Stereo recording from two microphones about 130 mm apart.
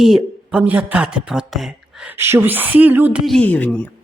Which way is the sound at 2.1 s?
20° right (ahead or behind).